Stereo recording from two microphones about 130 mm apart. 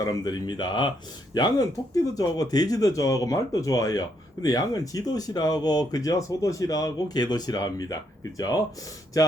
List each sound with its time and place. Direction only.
0.0 s speech: 30° left (ahead or behind)